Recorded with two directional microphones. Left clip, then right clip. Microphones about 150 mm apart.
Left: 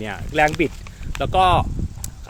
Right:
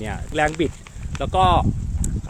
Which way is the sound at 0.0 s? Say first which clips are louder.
Left 3 dB; 5° left (ahead or behind).